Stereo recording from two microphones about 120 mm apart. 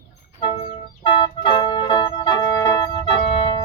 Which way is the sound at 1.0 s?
40° left (ahead or behind).